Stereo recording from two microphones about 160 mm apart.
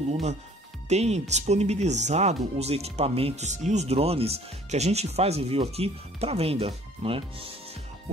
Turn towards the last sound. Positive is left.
turn(degrees=-40)  # may be behind; listen again after turning